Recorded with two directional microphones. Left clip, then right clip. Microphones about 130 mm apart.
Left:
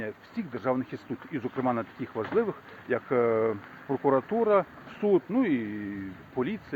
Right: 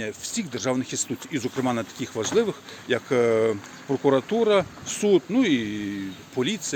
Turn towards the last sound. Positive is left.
turn(degrees=-20)  # may be behind; listen again after turning